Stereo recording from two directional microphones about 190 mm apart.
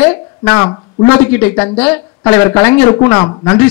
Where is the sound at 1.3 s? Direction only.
10° left (ahead or behind).